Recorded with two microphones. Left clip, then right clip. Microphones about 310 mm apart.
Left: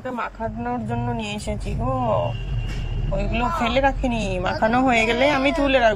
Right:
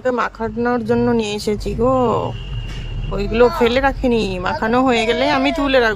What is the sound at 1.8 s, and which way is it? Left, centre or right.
Speech, right.